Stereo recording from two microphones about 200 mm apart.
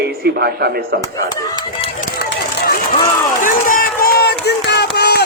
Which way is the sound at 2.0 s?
45° left (ahead or behind).